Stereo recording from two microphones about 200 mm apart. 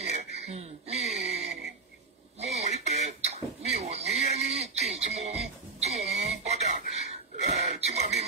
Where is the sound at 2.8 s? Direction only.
35° right (ahead or behind).